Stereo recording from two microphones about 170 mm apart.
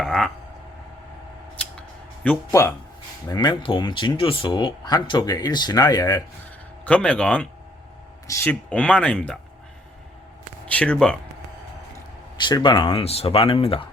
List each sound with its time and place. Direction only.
0.0 s a sound: 5° left (ahead or behind)
2.5 s speech: 15° left (ahead or behind)
6.8 s speech: 5° left (ahead or behind)
10.7 s speech: 5° left (ahead or behind)
12.4 s speech: 25° left (ahead or behind)